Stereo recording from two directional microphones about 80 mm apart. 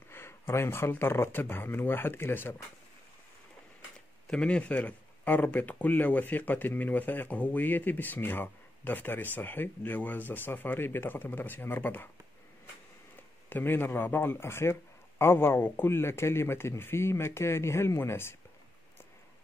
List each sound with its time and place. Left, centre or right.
0.1 s speech: left
4.3 s speech: centre
13.1 s speech: left